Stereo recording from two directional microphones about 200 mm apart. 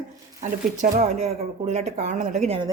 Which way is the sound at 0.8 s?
35° right (ahead or behind).